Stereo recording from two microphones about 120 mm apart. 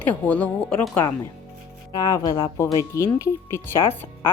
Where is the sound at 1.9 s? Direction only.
30° left (ahead or behind).